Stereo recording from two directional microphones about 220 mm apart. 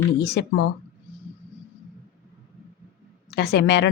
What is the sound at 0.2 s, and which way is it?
Speech, 50° left (ahead or behind).